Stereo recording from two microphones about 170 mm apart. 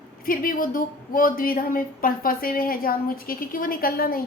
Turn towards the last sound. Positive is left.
turn(degrees=60)  # may be behind; listen again after turning